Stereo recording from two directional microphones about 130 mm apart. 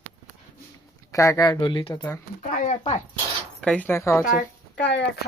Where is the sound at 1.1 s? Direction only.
25° left (ahead or behind).